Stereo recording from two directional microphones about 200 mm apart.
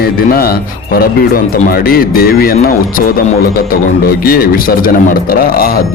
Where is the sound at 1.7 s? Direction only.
45° left (ahead or behind).